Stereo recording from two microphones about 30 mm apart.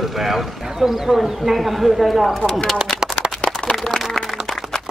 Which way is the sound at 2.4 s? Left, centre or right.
Left.